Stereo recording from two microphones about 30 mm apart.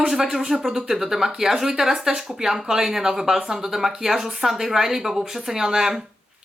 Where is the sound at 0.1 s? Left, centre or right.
Centre.